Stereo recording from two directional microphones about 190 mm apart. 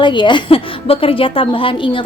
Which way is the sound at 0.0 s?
25° left (ahead or behind).